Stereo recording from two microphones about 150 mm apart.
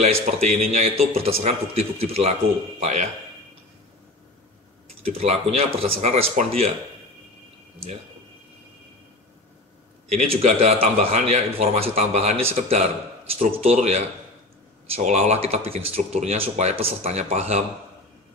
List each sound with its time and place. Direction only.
0.0 s a man's voice: 45° right (ahead or behind)
5.0 s a man's voice: 45° right (ahead or behind)
10.4 s a man's voice: 45° right (ahead or behind)